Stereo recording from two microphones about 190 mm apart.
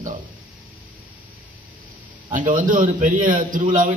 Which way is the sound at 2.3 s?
45° right (ahead or behind).